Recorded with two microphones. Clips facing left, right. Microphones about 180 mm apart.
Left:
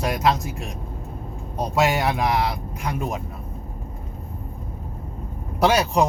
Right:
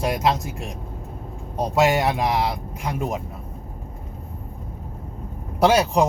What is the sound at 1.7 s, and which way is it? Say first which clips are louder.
Speech: right 2 dB; 25° right (ahead or behind).